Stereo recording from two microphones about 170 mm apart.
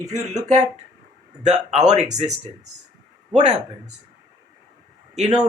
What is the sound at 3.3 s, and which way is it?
Speech, 40° right (ahead or behind).